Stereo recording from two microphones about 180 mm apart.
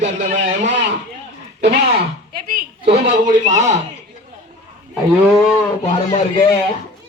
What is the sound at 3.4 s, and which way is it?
Speech, 40° right (ahead or behind).